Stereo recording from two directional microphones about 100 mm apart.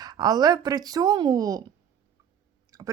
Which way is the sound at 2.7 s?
35° right (ahead or behind).